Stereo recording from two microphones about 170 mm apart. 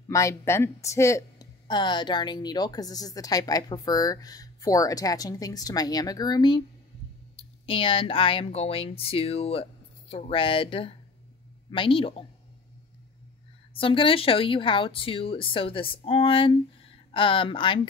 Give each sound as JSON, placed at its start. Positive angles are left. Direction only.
{"t": 0.1, "sound": "a woman's voice", "side_deg": 15}
{"t": 13.7, "sound": "a woman's voice", "side_deg": 30}